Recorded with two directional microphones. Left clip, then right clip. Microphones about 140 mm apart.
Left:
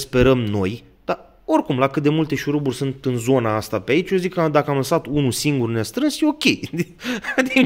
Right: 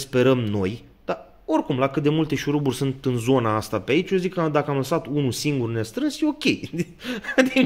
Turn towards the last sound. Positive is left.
turn(degrees=40)  # may be behind; listen again after turning